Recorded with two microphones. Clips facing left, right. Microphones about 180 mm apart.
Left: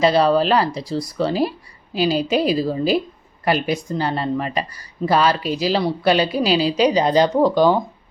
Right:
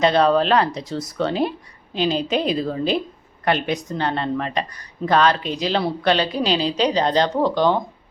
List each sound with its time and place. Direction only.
0.0 s speech: 5° left (ahead or behind)